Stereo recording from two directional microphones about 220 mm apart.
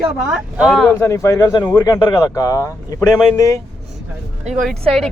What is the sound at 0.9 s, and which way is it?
Speech, 10° left (ahead or behind).